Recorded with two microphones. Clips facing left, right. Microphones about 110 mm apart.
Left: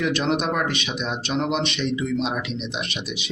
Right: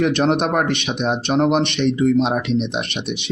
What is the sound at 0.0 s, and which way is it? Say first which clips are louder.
Speech: right 5 dB; 55° right (ahead or behind).